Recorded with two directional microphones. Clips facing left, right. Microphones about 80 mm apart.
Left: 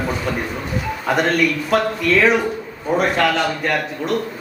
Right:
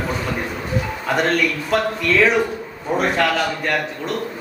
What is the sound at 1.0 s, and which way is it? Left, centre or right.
Speech, centre.